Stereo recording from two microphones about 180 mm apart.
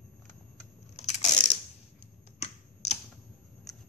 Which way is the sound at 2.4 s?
35° left (ahead or behind).